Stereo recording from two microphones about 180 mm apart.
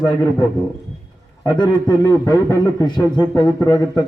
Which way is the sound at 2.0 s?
20° left (ahead or behind).